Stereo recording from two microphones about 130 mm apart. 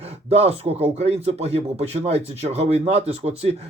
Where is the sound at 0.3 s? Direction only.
50° right (ahead or behind).